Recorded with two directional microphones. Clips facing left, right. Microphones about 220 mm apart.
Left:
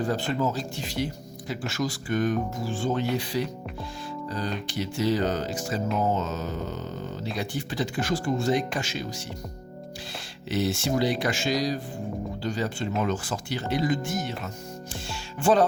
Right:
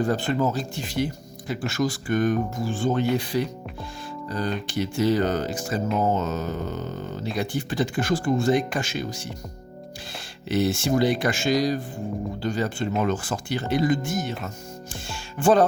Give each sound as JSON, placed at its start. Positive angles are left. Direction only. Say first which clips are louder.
{"t": 0.1, "sound": "speech", "louder": "right 3 dB", "side_deg": -50}
{"t": 10.5, "sound": "speech", "louder": "right 4 dB", "side_deg": -50}
{"t": 15.0, "sound": "music", "louder": "right 3 dB", "side_deg": -50}